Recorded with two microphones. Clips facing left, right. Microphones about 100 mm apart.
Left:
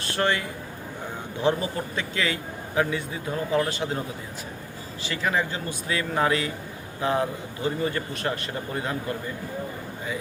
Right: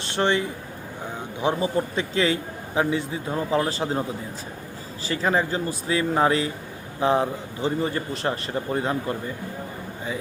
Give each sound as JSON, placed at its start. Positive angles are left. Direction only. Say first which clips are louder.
{"t": 0.0, "sound": "a man's voice", "louder": "right 3 dB", "side_deg": -25}
{"t": 2.0, "sound": "a man's voice", "louder": "right 3 dB", "side_deg": -30}
{"t": 5.0, "sound": "a man's voice", "louder": "right 3 dB", "side_deg": -35}